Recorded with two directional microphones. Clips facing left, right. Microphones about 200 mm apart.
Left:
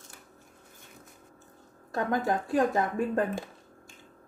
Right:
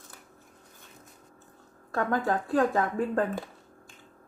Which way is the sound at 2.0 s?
20° left (ahead or behind).